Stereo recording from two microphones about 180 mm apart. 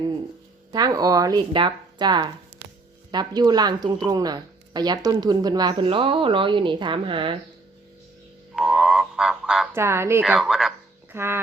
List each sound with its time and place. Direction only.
0.7 s speech: 20° right (ahead or behind)
8.5 s frog: centre (ahead or behind)
9.7 s speech: 15° right (ahead or behind)